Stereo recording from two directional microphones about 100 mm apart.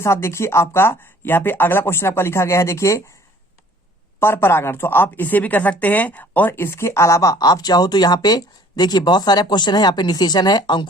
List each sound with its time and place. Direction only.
0.0 s speech: 25° left (ahead or behind)
4.2 s speech: 25° left (ahead or behind); by 10.8 s 50° left (ahead or behind)